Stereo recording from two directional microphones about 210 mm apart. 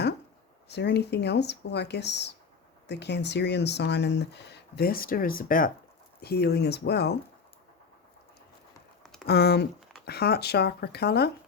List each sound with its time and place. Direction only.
0.7 s speech: 55° left (ahead or behind)
9.2 s speech: 50° left (ahead or behind)